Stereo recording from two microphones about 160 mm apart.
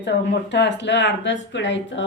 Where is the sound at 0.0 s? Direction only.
90° left.